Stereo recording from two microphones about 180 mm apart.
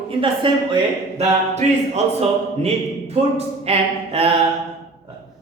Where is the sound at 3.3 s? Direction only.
35° right (ahead or behind).